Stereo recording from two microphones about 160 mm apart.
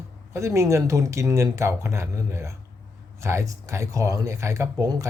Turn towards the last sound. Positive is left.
turn(degrees=-20)  # may be behind; listen again after turning